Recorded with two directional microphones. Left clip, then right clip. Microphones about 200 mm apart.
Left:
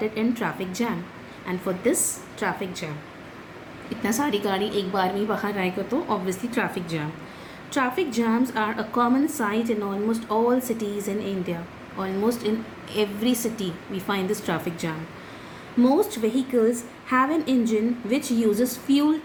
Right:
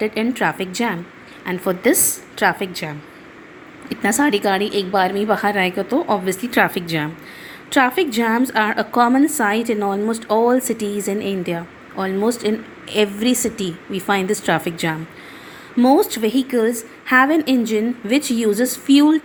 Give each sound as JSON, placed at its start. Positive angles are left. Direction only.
{"t": 0.0, "sound": "a woman's voice", "side_deg": -40}
{"t": 16.0, "sound": "a woman's voice", "side_deg": -40}